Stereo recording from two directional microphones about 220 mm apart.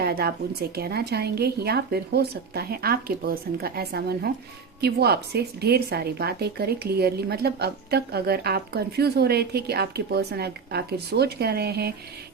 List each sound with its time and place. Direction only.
0.0 s a woman's voice: 45° right (ahead or behind)